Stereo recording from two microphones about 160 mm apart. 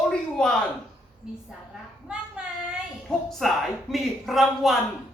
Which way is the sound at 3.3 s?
Centre (ahead or behind).